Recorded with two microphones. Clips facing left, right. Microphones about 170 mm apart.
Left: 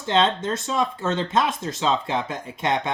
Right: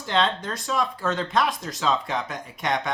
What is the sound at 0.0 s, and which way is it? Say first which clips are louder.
Speech: left 3 dB; 25° left (ahead or behind).